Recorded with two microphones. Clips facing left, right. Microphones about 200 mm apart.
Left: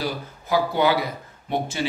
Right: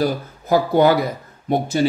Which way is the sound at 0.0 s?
45° right (ahead or behind).